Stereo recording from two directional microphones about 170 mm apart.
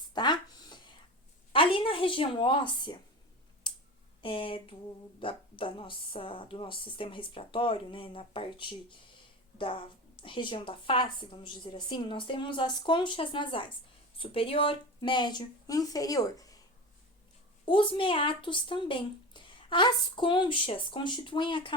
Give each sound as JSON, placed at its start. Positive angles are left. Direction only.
{"t": 0.1, "sound": "a sound", "side_deg": 25}
{"t": 4.2, "sound": "speech", "side_deg": 30}
{"t": 17.7, "sound": "speech", "side_deg": 30}